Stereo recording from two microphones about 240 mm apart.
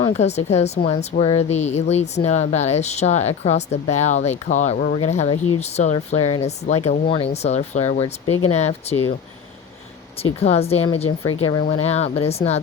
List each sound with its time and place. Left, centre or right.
0.0 s speech: left
10.4 s speech: left